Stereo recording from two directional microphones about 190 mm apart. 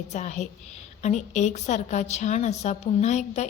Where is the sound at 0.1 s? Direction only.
40° left (ahead or behind).